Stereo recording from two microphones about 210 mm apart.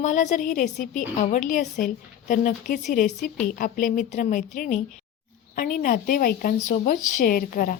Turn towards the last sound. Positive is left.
turn(degrees=40)  # may be behind; listen again after turning